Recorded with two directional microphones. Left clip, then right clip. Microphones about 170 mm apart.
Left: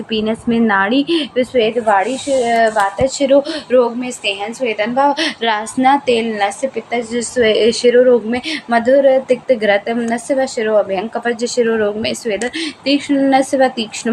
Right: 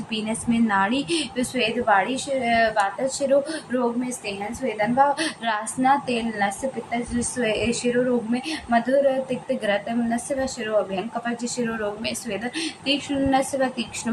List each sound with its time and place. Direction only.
0.1 s speech: 35° left (ahead or behind)